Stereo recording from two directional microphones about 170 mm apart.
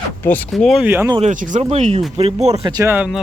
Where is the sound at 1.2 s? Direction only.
50° right (ahead or behind).